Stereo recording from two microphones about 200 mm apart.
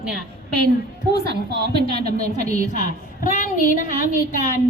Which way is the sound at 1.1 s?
55° right (ahead or behind).